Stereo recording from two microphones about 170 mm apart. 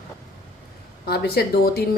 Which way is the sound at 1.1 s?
65° left (ahead or behind).